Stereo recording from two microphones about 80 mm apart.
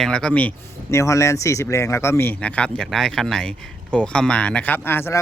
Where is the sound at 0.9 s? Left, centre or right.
Left.